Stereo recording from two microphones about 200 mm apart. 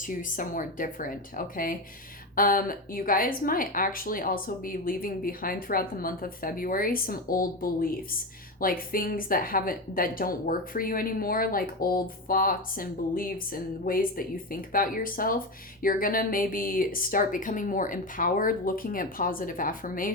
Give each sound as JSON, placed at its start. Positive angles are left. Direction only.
{"t": 0.1, "sound": "a woman's voice", "side_deg": 40}